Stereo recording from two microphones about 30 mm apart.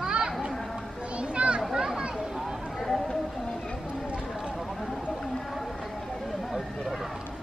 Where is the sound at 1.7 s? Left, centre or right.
Right.